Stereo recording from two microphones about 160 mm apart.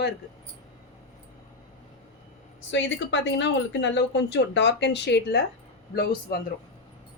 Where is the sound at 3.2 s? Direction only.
90° left.